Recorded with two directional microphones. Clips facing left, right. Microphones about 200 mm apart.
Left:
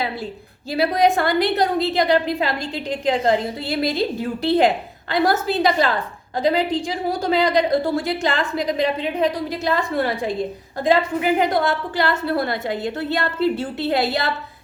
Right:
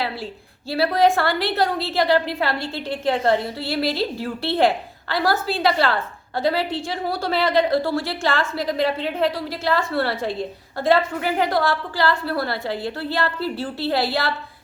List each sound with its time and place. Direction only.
0.7 s a woman's voice: 15° left (ahead or behind)